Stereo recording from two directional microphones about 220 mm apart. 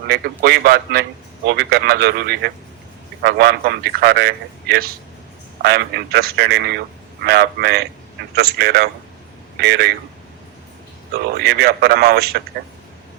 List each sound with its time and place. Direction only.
0.1 s a man's voice: 45° right (ahead or behind)
11.1 s a man's voice: 45° right (ahead or behind)